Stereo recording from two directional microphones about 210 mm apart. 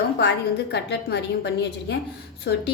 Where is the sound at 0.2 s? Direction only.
55° left (ahead or behind).